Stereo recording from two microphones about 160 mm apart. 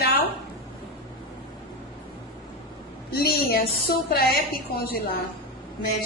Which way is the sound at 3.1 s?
75° left (ahead or behind).